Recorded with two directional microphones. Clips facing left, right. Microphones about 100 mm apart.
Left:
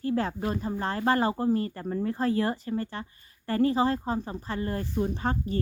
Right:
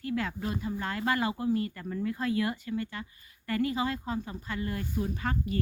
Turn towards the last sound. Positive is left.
turn(degrees=30)  # may be behind; listen again after turning